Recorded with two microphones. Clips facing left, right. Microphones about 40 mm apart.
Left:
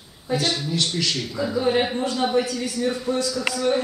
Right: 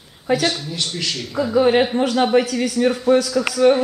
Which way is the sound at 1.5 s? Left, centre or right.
Right.